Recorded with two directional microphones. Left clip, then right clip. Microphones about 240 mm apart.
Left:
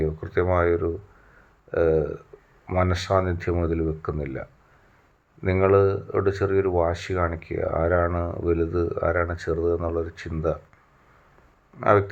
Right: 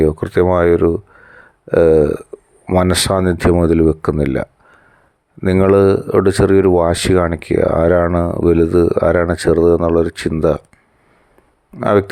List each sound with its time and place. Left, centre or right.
0.0 s speech: right
11.8 s speech: right